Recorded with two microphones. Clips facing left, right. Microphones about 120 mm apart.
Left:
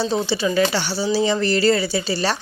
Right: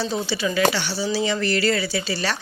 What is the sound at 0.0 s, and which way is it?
A woman's voice, 30° left (ahead or behind).